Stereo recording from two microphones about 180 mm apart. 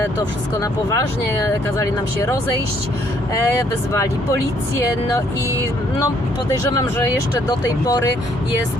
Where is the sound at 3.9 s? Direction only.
15° left (ahead or behind).